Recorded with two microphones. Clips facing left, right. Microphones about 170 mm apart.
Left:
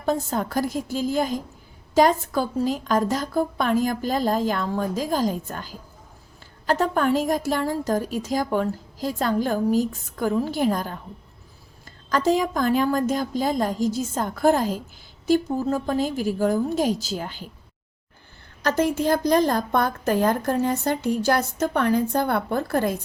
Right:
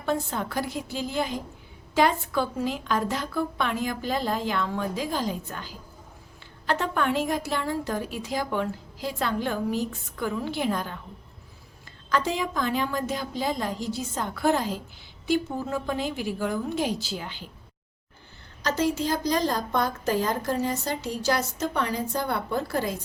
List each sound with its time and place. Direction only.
0.0 s a woman's voice: 40° left (ahead or behind)
12.1 s a woman's voice: 45° left (ahead or behind)
18.6 s a woman's voice: 55° left (ahead or behind)